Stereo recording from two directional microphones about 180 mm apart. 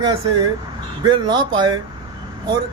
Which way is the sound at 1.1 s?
25° right (ahead or behind).